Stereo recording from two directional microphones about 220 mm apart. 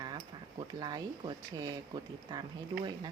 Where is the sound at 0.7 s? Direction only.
20° right (ahead or behind).